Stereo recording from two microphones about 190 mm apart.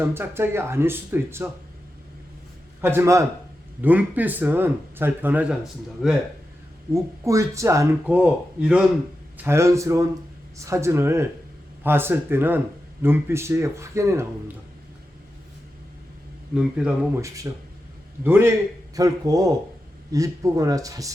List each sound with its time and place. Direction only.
0.0 s speech: 10° right (ahead or behind)
2.8 s speech: 15° right (ahead or behind)
6.9 s speech: 15° right (ahead or behind)
16.6 s speech: 5° right (ahead or behind)
17.2 s speech: 15° right (ahead or behind)